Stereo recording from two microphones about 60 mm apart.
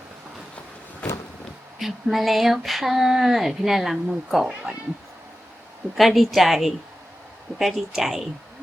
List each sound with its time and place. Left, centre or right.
1.0 s a sound: centre
1.8 s speech: centre
6.0 s speech: centre